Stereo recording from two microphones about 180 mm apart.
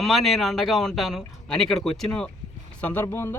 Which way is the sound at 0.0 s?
Centre (ahead or behind).